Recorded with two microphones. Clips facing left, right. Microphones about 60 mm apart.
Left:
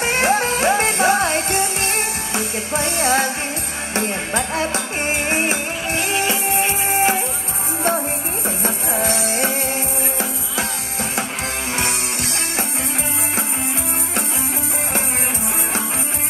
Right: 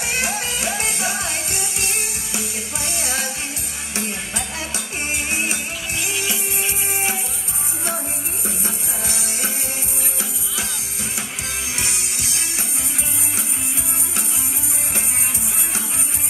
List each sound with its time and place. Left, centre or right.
0.0 s music: left
8.5 s music: left
11.8 s music: left